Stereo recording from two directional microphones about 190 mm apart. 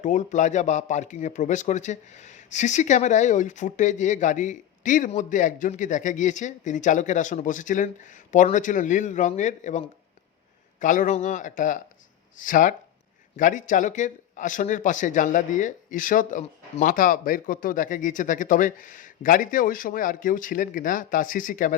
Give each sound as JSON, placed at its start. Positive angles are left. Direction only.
{"t": 0.0, "sound": "speech", "side_deg": 40}